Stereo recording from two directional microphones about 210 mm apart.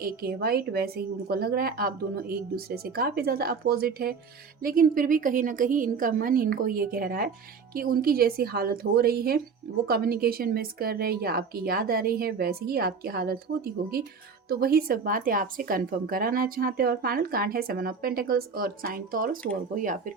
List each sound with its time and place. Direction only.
0.0 s a woman's voice: 45° right (ahead or behind)